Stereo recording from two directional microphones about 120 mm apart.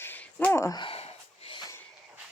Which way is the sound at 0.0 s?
15° left (ahead or behind).